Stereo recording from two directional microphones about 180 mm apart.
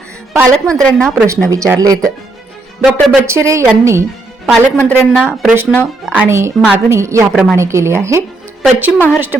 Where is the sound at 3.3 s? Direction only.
15° right (ahead or behind).